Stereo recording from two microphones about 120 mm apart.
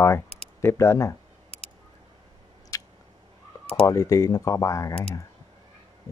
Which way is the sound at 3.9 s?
25° left (ahead or behind).